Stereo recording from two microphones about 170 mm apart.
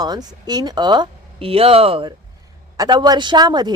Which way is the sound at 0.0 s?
25° right (ahead or behind).